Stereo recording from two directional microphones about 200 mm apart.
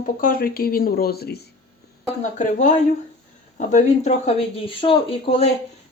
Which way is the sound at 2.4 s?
40° left (ahead or behind).